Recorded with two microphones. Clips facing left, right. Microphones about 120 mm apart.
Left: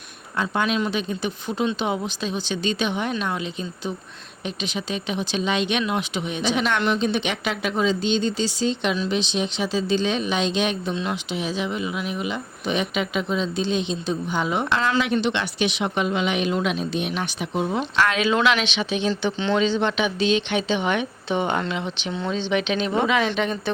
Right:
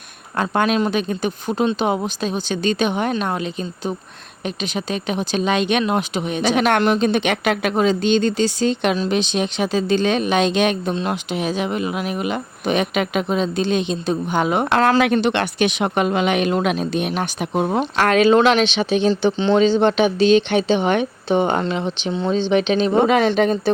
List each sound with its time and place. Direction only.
0.3 s speech: 50° right (ahead or behind)